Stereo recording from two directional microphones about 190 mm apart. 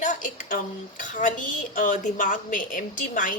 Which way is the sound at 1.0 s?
40° left (ahead or behind).